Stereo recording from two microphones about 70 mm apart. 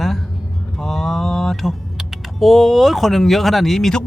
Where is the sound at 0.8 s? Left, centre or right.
Centre.